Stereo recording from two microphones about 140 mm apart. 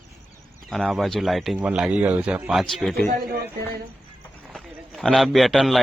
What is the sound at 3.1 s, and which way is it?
Speech, 90° right.